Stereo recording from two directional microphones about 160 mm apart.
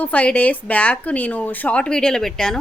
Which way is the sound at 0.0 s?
10° left (ahead or behind).